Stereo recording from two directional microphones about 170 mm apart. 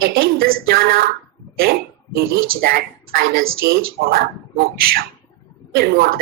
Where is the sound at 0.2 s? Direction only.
65° right (ahead or behind).